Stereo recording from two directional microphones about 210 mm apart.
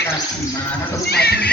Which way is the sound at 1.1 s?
50° left (ahead or behind).